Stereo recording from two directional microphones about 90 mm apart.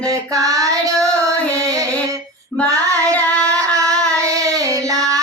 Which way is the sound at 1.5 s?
40° right (ahead or behind).